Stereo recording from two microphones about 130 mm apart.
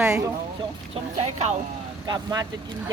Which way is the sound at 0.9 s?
60° right (ahead or behind).